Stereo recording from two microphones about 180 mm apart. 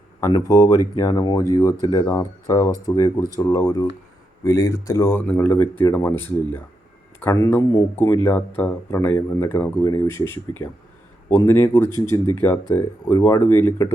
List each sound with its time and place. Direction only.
0.2 s speech: 20° left (ahead or behind)